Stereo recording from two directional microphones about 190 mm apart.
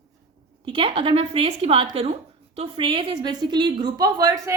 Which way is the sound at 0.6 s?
25° right (ahead or behind).